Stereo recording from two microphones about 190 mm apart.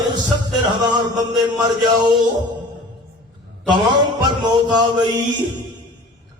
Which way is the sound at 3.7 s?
25° right (ahead or behind).